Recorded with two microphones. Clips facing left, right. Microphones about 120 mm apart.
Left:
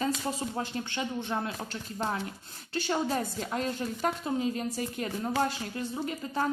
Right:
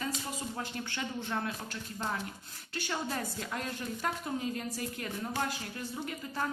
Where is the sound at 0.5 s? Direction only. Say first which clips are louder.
Left 5 dB; 25° left (ahead or behind).